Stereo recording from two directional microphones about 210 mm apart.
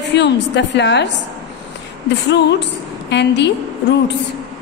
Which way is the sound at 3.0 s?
55° left (ahead or behind).